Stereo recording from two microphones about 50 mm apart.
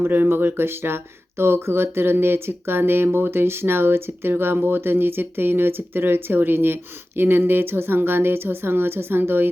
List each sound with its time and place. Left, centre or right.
0.0 s speech: right